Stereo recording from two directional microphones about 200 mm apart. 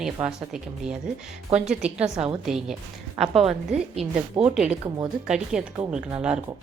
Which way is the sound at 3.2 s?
30° right (ahead or behind).